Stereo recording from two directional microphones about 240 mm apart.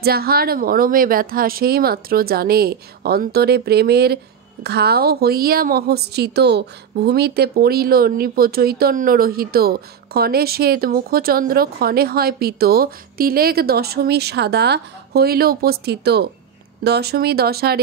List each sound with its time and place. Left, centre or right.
0.0 s a woman's voice: right